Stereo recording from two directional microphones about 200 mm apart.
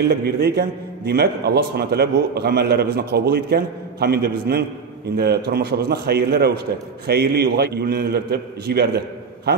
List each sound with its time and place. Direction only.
0.1 s a man's voice: 55° right (ahead or behind)